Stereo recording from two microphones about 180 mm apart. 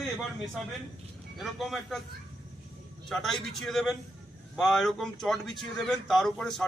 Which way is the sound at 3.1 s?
Centre (ahead or behind).